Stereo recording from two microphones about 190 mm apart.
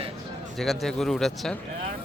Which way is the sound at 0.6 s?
Centre (ahead or behind).